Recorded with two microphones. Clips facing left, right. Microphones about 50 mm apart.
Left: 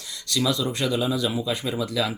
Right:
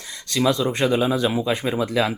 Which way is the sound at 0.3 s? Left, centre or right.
Right.